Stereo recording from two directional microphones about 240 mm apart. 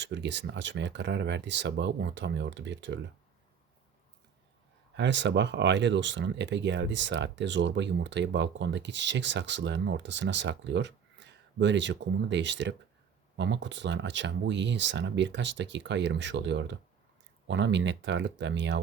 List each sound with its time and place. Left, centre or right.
0.0 s speech: right
4.9 s speech: right